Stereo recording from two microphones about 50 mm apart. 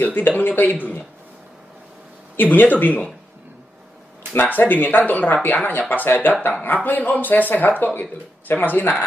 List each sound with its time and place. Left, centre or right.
0.0 s speech: left
2.3 s speech: left
4.3 s speech: left